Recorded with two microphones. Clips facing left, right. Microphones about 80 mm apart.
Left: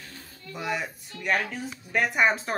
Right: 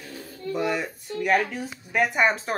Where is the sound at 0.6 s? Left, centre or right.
Centre.